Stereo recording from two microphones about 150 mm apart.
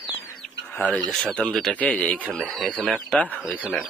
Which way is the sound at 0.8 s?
5° left (ahead or behind).